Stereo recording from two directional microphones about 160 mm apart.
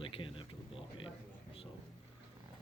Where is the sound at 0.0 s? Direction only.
35° left (ahead or behind).